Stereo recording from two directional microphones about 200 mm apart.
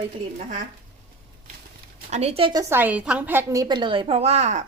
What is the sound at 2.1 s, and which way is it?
A woman's voice, 30° right (ahead or behind).